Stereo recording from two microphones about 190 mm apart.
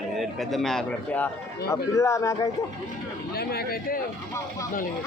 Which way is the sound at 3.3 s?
55° left (ahead or behind).